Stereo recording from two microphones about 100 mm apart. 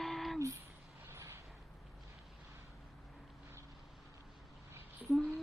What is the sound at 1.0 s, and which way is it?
Vehicle, 25° right (ahead or behind).